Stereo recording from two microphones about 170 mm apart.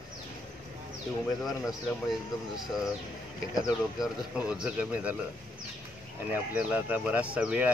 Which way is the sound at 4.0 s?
5° right (ahead or behind).